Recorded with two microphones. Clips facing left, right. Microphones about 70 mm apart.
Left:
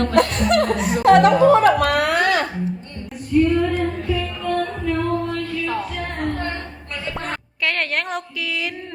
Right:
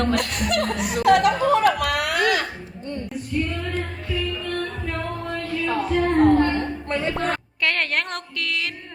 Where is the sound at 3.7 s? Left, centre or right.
Centre.